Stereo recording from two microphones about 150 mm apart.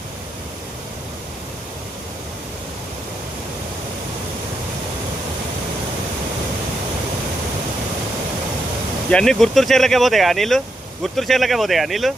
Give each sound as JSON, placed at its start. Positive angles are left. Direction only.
{"t": 9.0, "sound": "speech", "side_deg": 5}